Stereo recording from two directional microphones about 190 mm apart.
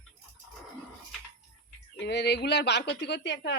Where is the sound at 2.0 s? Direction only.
65° left (ahead or behind).